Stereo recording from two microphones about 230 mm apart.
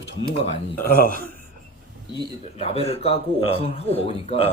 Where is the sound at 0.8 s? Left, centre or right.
Left.